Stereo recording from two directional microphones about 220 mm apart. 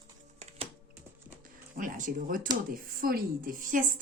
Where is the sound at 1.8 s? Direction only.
35° right (ahead or behind).